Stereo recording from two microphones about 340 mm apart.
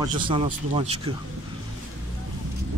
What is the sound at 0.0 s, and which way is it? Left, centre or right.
Speech, centre.